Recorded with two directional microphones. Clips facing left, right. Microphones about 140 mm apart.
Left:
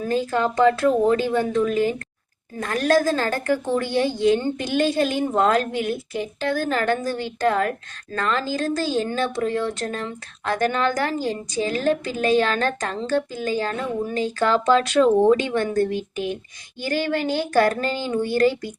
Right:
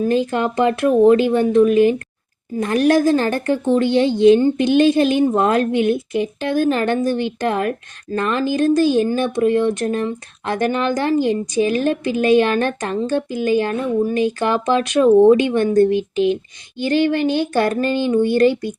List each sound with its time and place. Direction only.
0.2 s speech: 20° right (ahead or behind)